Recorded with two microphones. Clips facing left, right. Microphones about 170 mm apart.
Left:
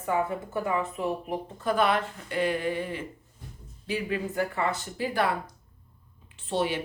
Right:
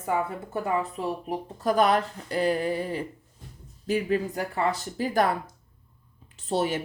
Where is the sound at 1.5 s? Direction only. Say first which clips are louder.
Right 3 dB; 40° right (ahead or behind).